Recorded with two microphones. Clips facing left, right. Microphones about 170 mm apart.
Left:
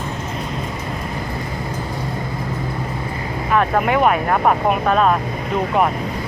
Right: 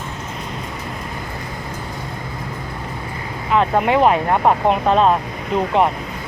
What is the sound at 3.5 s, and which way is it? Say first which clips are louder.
Speech: right 1 dB; 20° right (ahead or behind).